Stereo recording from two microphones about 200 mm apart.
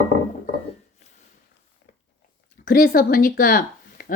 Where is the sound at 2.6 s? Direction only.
45° left (ahead or behind).